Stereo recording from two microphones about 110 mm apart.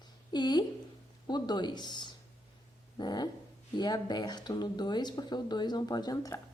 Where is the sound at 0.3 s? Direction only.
40° left (ahead or behind).